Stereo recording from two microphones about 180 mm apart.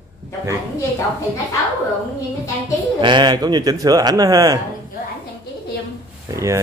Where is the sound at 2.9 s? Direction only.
25° right (ahead or behind).